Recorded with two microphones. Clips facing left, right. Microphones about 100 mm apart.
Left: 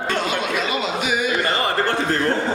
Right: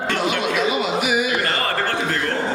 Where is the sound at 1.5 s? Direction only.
20° left (ahead or behind).